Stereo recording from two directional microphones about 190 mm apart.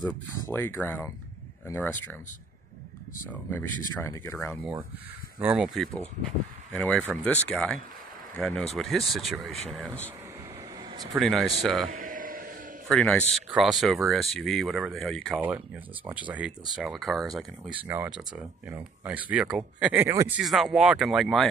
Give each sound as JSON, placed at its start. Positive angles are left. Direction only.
{"t": 0.0, "sound": "speech", "side_deg": 10}
{"t": 3.5, "sound": "speech", "side_deg": 15}
{"t": 5.4, "sound": "speech", "side_deg": -5}
{"t": 6.7, "sound": "speech", "side_deg": 5}
{"t": 10.8, "sound": "air conditioning", "side_deg": -25}
{"t": 11.1, "sound": "speech", "side_deg": 0}
{"t": 11.9, "sound": "a sound", "side_deg": -45}
{"t": 12.8, "sound": "speech", "side_deg": 5}
{"t": 17.7, "sound": "speech", "side_deg": -10}